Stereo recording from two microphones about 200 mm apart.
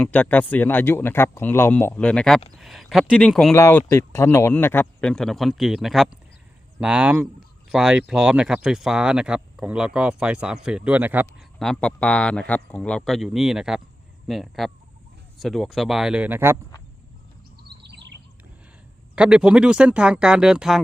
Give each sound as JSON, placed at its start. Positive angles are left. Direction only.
{"t": 0.0, "sound": "speech", "side_deg": 10}
{"t": 11.6, "sound": "speech", "side_deg": 5}
{"t": 17.6, "sound": "chirp", "side_deg": -55}
{"t": 19.1, "sound": "speech", "side_deg": -5}